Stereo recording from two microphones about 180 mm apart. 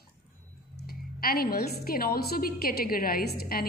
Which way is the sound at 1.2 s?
55° left (ahead or behind).